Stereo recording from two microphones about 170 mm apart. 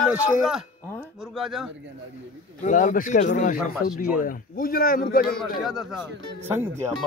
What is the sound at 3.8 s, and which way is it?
Speech, 5° right (ahead or behind).